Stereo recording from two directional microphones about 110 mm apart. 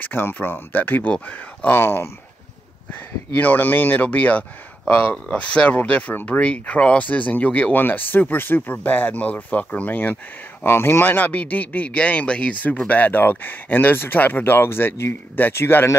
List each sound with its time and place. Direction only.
0.0 s speech: 20° left (ahead or behind)
3.3 s speech: 15° left (ahead or behind)